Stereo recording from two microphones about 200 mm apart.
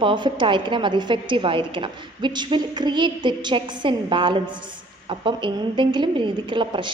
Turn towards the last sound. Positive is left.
turn(degrees=-25)  # may be behind; listen again after turning